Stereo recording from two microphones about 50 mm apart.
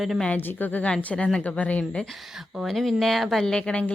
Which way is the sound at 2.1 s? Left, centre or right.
Centre.